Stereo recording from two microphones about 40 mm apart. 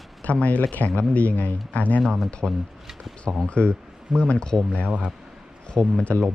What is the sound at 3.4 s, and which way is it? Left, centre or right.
Speech, left.